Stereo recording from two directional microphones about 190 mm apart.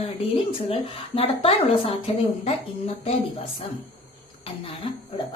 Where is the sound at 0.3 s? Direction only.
30° left (ahead or behind).